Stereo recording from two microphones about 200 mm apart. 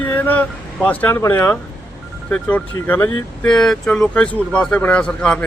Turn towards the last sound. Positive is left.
turn(degrees=5)  # may be behind; listen again after turning